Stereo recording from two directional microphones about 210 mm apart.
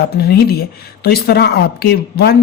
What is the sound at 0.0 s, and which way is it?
Speech, 50° left (ahead or behind).